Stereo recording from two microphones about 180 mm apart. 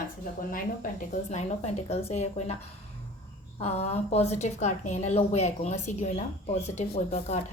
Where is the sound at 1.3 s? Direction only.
40° left (ahead or behind).